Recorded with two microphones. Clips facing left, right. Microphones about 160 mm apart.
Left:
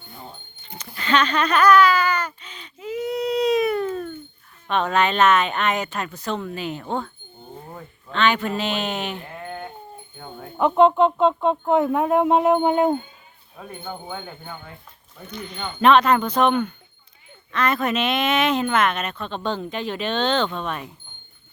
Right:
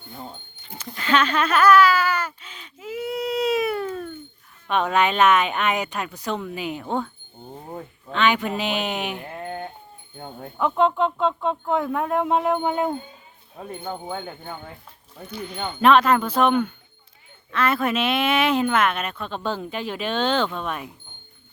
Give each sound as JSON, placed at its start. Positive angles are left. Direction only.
{"t": 0.8, "sound": "a sound", "side_deg": -5}
{"t": 4.7, "sound": "speech", "side_deg": -10}
{"t": 7.7, "sound": "a sound", "side_deg": -25}
{"t": 8.1, "sound": "speech", "side_deg": -10}
{"t": 10.8, "sound": "speech", "side_deg": 20}
{"t": 13.6, "sound": "speech", "side_deg": -25}
{"t": 15.3, "sound": "speech", "side_deg": -5}